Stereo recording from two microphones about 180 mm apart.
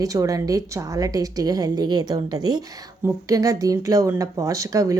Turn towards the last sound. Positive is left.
turn(degrees=-20)  # may be behind; listen again after turning